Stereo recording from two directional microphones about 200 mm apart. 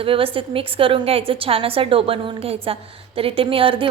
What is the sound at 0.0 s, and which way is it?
A woman's voice, 25° right (ahead or behind).